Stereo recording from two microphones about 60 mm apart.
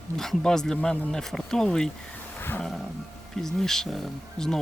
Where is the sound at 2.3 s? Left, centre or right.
Left.